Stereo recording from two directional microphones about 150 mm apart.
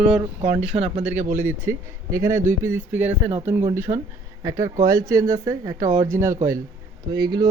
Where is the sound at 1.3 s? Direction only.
15° right (ahead or behind).